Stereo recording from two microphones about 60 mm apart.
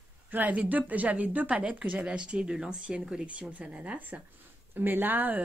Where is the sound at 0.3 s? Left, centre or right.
Right.